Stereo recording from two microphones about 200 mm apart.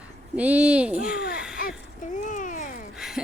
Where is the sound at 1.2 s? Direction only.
50° left (ahead or behind).